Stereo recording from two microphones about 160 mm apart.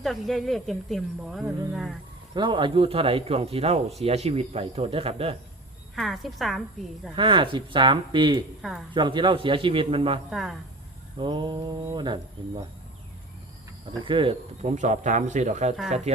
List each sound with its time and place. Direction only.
0.0 s speech: centre (ahead or behind)
2.3 s speech: 30° right (ahead or behind)
6.0 s speech: centre (ahead or behind)
7.2 s speech: 30° right (ahead or behind)
10.2 s speech: centre (ahead or behind)
11.2 s speech: 30° right (ahead or behind)
14.0 s speech: 30° right (ahead or behind)